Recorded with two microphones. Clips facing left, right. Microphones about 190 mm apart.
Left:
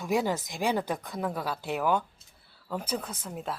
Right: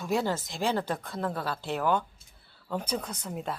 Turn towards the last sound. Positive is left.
turn(degrees=0)  # may be behind; listen again after turning